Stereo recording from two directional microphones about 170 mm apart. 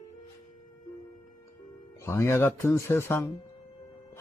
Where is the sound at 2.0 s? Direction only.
15° left (ahead or behind).